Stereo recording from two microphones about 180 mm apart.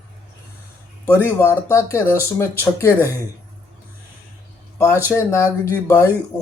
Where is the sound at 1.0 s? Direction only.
15° left (ahead or behind).